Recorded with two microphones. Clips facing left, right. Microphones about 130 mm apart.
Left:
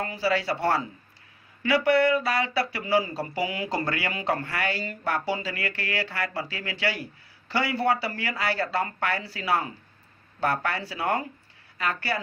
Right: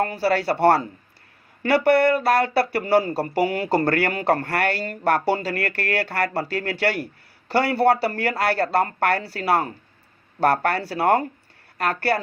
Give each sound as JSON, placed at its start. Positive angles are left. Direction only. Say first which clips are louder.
{"t": 0.0, "sound": "speech", "louder": "right 5 dB", "side_deg": -60}